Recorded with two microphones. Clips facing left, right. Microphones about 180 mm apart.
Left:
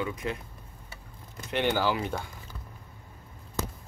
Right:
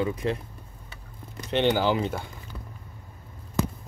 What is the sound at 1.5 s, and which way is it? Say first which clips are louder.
Speech: right 4 dB; 20° right (ahead or behind).